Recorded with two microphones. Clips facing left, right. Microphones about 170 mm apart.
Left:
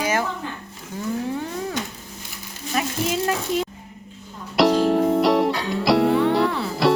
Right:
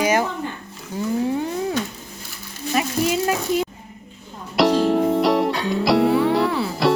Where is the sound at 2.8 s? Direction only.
5° right (ahead or behind).